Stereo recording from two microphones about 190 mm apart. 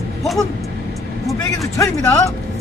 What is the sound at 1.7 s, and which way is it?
Speech, 15° left (ahead or behind).